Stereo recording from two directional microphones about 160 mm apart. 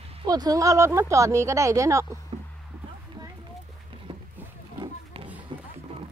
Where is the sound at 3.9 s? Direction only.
35° right (ahead or behind).